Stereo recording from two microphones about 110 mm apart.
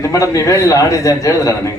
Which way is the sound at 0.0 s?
30° left (ahead or behind).